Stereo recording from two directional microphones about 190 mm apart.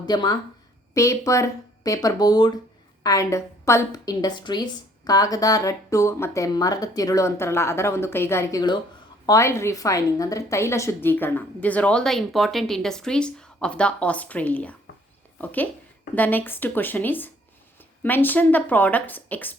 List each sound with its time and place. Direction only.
0.0 s a woman's voice: 20° left (ahead or behind)
16.1 s a woman's voice: 10° left (ahead or behind)